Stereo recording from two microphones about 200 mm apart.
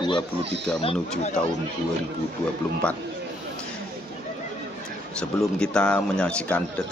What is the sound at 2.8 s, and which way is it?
Speech, 5° left (ahead or behind).